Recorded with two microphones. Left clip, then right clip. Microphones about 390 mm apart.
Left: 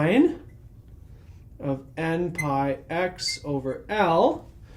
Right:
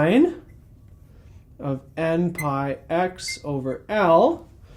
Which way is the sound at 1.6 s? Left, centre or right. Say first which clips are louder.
Right 3 dB; right.